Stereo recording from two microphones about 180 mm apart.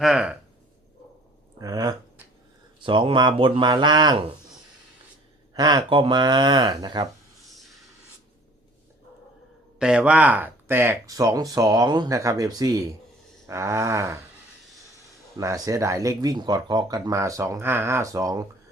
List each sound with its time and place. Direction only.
0.0 s speech: 5° right (ahead or behind)
1.5 s speech: 20° right (ahead or behind)
5.5 s speech: 25° right (ahead or behind)
9.7 s speech: 5° right (ahead or behind); by 18.4 s 20° right (ahead or behind)